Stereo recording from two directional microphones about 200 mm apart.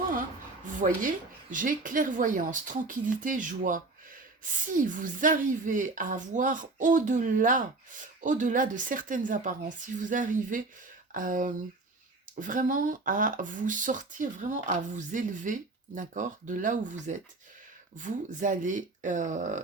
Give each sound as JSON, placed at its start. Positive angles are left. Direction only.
{"t": 0.7, "sound": "speech", "side_deg": -40}